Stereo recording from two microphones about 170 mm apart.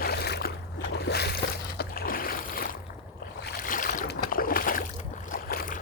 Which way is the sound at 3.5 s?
55° left (ahead or behind).